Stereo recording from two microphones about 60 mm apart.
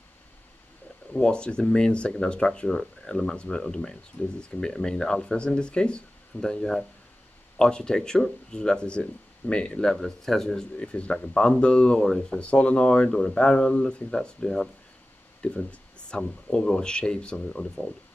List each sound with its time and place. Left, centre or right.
1.1 s speech: centre
9.9 s speech: centre
10.8 s speech: centre
15.4 s speech: left